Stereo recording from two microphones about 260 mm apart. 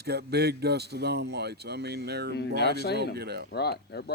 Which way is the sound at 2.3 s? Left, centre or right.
Left.